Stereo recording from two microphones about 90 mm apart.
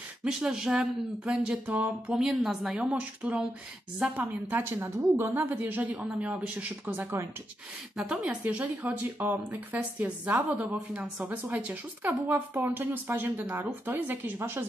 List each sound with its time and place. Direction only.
0.2 s speech: 10° right (ahead or behind)
2.1 s a woman's voice: 5° right (ahead or behind); by 7.2 s 25° right (ahead or behind)
8.0 s a woman's voice: 10° right (ahead or behind)